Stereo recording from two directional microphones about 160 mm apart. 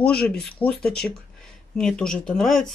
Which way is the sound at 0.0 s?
5° left (ahead or behind).